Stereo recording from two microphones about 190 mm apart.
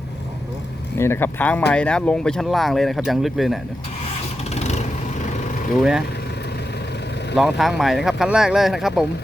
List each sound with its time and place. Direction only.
0.9 s speech: 15° left (ahead or behind)
4.5 s vehicle: 35° left (ahead or behind)
7.3 s speech: centre (ahead or behind)